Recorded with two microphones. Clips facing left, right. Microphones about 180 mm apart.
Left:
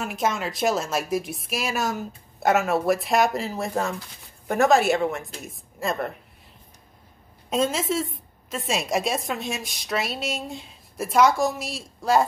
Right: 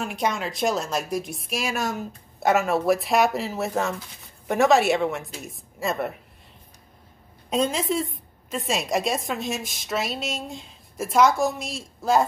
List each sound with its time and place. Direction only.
0.0 s a woman's voice: centre (ahead or behind)
7.4 s a woman's voice: centre (ahead or behind)